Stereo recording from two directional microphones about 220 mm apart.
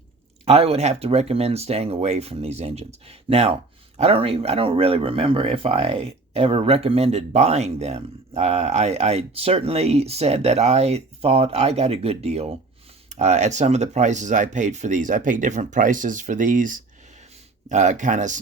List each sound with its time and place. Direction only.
0.4 s speech: 25° right (ahead or behind)